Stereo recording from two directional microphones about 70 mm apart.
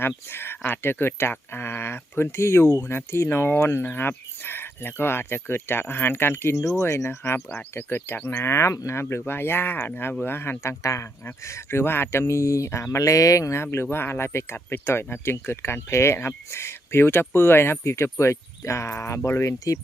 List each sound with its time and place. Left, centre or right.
0.3 s speech: left
7.7 s speech: left
8.4 s speech: left
10.6 s speech: left
13.6 s speech: left